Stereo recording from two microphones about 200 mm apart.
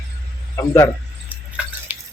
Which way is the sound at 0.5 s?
15° left (ahead or behind).